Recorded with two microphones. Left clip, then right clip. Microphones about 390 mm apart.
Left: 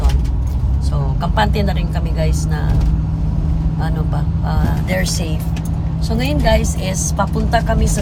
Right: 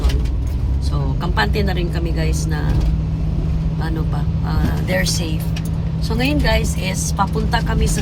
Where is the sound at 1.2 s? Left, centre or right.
Centre.